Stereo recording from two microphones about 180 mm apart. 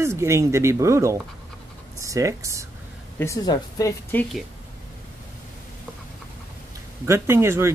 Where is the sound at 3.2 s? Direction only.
20° left (ahead or behind).